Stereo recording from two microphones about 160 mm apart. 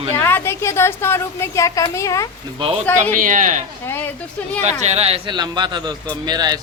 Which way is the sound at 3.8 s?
15° left (ahead or behind).